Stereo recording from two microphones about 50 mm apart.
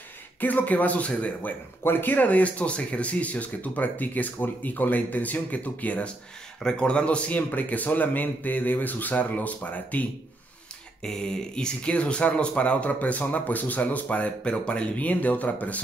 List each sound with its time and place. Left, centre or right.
0.4 s speech: left
1.8 s speech: left
11.0 s speech: centre; by 15.8 s left